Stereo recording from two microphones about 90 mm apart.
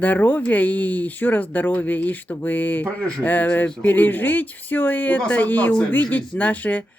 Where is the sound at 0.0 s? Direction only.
20° left (ahead or behind).